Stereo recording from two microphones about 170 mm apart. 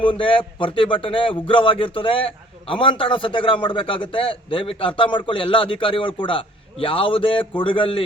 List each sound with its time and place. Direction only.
0.0 s speech: 30° left (ahead or behind)